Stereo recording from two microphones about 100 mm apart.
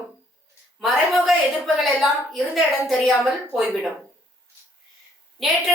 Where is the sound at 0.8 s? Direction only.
Centre (ahead or behind).